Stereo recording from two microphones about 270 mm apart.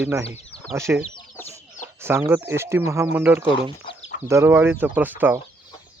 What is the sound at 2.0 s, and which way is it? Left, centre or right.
Speech, centre.